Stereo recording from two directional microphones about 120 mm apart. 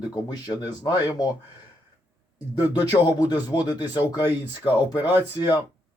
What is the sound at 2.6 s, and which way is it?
Speech, 35° left (ahead or behind).